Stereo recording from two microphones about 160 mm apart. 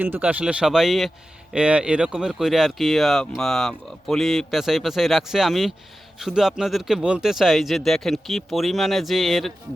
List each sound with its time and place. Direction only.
0.0 s speech: 10° right (ahead or behind)